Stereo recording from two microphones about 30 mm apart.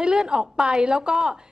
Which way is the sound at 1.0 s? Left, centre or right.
Right.